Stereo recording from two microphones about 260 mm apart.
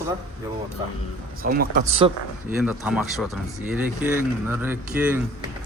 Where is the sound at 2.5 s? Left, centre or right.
Centre.